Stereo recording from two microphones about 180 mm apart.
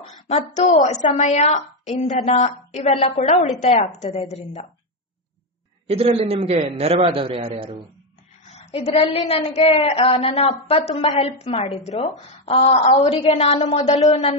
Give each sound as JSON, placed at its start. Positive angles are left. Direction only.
{"t": 0.3, "sound": "a woman's voice", "side_deg": 40}
{"t": 5.9, "sound": "a man's voice", "side_deg": -35}
{"t": 8.5, "sound": "a woman's voice", "side_deg": 35}